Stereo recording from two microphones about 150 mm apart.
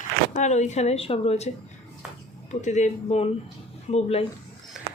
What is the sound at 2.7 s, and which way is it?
Speech, 50° left (ahead or behind).